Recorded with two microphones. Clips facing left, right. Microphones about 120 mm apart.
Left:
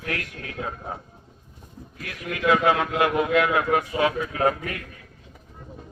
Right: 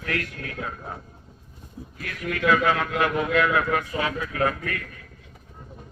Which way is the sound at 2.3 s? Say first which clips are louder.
Left 1 dB; 20° left (ahead or behind).